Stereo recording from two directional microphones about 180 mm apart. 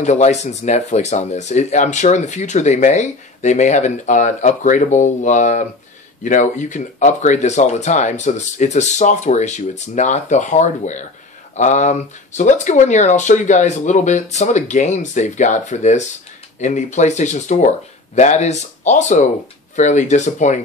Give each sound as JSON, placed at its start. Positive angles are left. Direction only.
{"t": 0.0, "sound": "speech", "side_deg": 40}